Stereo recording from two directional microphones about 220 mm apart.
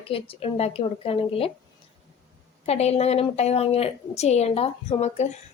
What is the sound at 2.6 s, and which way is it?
Speech, 30° left (ahead or behind).